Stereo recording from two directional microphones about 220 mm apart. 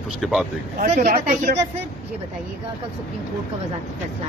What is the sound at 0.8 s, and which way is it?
Speech, 35° right (ahead or behind).